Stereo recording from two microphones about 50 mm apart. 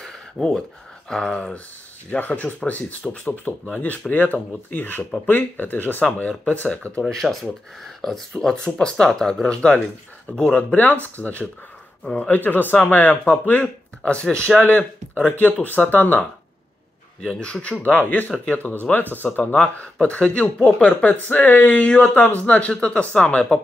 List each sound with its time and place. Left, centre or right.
0.0 s a sound: centre
2.0 s speech: left
7.0 s a man's voice: centre; by 12.3 s left
12.3 s speech: left
14.2 s speech: centre
14.6 s speech: left
17.3 s speech: centre